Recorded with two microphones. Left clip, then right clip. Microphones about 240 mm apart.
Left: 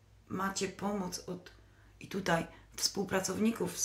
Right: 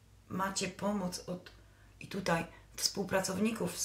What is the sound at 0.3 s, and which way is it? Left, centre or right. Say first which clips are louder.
Speech: even; centre.